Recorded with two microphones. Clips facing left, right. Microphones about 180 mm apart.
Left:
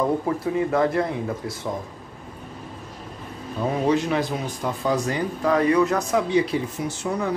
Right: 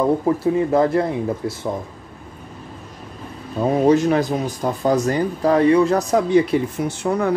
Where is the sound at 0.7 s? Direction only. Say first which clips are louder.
Right 2 dB; 30° right (ahead or behind).